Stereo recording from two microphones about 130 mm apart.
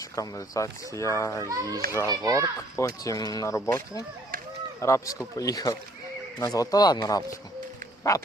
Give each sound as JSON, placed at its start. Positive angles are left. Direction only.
{"t": 0.0, "sound": "speech", "side_deg": 25}
{"t": 1.5, "sound": "a child's voice", "side_deg": -25}
{"t": 2.7, "sound": "speech", "side_deg": 25}